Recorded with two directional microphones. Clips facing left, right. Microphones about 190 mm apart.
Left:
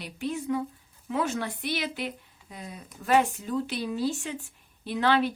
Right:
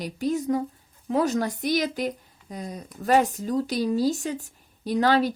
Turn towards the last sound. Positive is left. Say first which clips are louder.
# right 3 dB
turn(degrees=-40)  # may be behind; listen again after turning